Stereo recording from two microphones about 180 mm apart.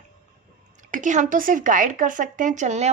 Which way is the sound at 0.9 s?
45° right (ahead or behind).